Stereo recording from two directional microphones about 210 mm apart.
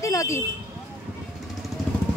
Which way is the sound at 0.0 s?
15° left (ahead or behind).